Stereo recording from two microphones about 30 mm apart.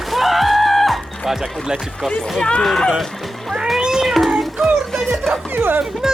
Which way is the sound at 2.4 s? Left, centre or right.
Left.